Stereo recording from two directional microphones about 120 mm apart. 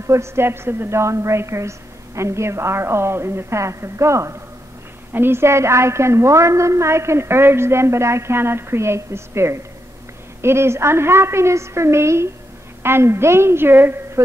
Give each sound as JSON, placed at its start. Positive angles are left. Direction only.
{"t": 0.0, "sound": "a woman's voice", "side_deg": -25}